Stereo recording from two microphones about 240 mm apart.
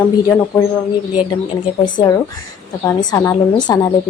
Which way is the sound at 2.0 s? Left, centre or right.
Centre.